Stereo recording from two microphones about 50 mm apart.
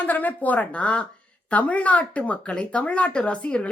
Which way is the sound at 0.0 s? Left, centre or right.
Left.